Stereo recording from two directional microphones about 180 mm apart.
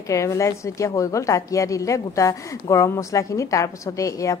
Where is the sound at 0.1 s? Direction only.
15° left (ahead or behind).